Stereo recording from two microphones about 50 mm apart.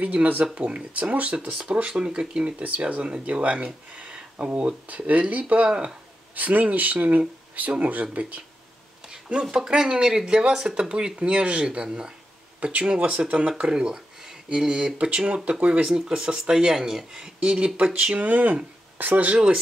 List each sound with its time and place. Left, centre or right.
0.0 s speech: right
2.6 s speech: right
9.1 s speech: centre
18.3 s speech: right
19.3 s speech: centre